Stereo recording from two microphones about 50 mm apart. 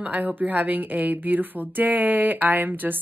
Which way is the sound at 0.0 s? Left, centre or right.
Right.